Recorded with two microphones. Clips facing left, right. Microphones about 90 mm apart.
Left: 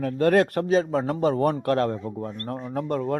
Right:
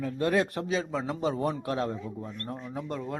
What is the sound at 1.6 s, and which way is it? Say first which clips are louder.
A man's voice: left 7 dB; 65° left (ahead or behind).